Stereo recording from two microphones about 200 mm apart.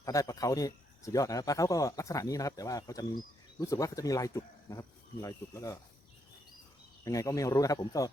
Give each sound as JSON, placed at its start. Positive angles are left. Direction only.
{"t": 0.0, "sound": "speech", "side_deg": 15}
{"t": 7.0, "sound": "speech", "side_deg": 15}